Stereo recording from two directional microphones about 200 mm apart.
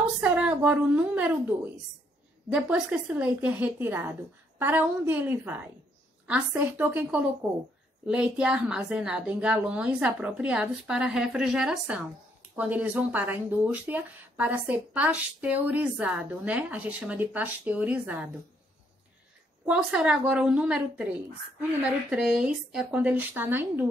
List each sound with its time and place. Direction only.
0.2 s a woman's voice: 5° right (ahead or behind)
2.5 s a woman's voice: 5° right (ahead or behind)
19.6 s a woman's voice: 5° right (ahead or behind)
22.1 s speech: 5° right (ahead or behind)